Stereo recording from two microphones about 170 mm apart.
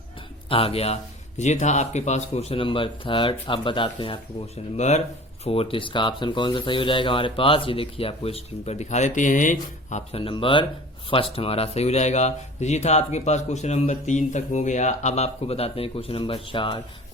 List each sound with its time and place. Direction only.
0.5 s speech: 35° left (ahead or behind)
4.8 s speech: 40° left (ahead or behind)